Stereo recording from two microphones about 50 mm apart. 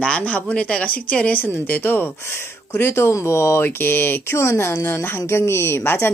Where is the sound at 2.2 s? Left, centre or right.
Left.